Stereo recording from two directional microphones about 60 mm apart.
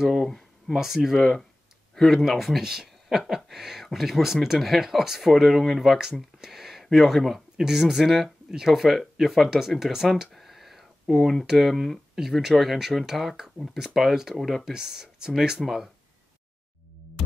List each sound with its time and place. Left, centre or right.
0.0 s speech: centre
0.7 s speech: centre